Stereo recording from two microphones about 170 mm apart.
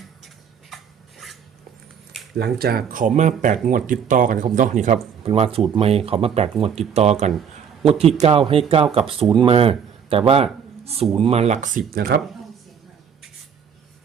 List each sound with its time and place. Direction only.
1.2 s a sound: centre (ahead or behind)
2.4 s speech: 65° right (ahead or behind); by 4.9 s 45° right (ahead or behind)
5.2 s speech: 35° right (ahead or behind); by 12.2 s 65° right (ahead or behind)